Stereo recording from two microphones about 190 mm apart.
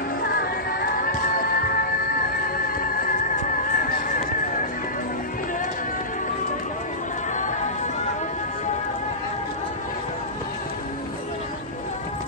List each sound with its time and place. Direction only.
0.2 s music: 50° left (ahead or behind)
7.3 s music: 40° left (ahead or behind)